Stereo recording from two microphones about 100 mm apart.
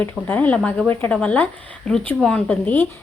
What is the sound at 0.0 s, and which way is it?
A woman's voice, 15° left (ahead or behind).